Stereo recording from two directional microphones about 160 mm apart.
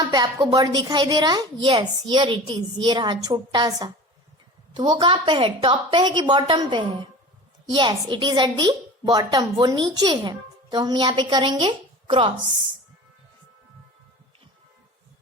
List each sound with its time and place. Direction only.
0.1 s a woman's voice: 25° right (ahead or behind)